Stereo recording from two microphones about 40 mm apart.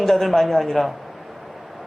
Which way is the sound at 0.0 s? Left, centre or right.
Centre.